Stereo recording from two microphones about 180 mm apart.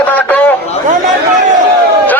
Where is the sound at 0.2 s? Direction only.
10° left (ahead or behind).